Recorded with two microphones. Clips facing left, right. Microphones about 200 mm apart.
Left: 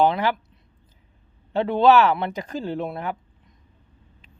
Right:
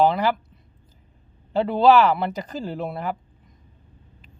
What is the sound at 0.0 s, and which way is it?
Speech, centre (ahead or behind).